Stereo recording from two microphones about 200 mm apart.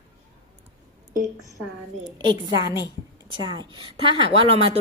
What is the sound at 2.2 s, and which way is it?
A woman's voice, 20° right (ahead or behind).